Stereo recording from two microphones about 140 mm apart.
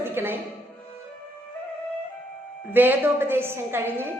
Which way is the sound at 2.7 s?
15° right (ahead or behind).